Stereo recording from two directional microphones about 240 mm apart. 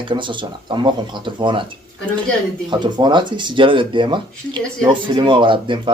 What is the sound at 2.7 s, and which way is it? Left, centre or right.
Speech, centre.